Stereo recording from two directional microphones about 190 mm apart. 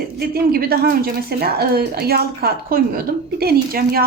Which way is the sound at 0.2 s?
55° right (ahead or behind).